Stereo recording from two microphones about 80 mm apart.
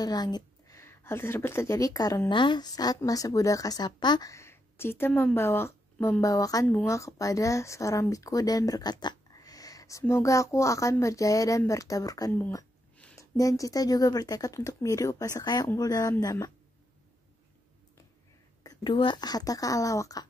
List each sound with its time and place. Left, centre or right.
0.0 s speech: left
0.7 s speech: left
2.2 s a woman's voice: left
4.3 s a woman's voice: left
6.2 s speech: left
6.7 s speech: left
12.3 s speech: left
13.2 s speech: left
18.9 s speech: left